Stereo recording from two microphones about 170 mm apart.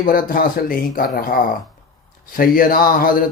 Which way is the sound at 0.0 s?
55° left (ahead or behind).